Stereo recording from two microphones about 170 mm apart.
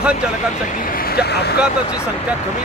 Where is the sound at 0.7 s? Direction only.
55° left (ahead or behind); by 1.5 s 75° left (ahead or behind).